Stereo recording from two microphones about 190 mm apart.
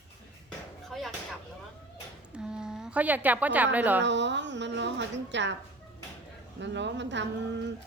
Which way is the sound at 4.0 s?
70° right (ahead or behind).